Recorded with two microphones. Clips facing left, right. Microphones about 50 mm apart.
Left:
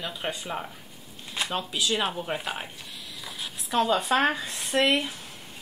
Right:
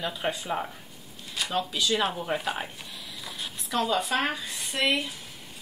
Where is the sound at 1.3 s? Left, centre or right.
Left.